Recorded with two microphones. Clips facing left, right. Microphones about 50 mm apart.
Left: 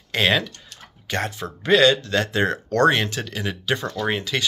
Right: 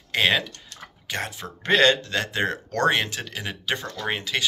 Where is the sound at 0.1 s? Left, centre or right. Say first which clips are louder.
Left 1 dB; centre.